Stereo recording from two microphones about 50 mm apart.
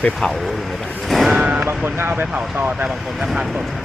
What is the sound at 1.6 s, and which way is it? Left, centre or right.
Speech, right.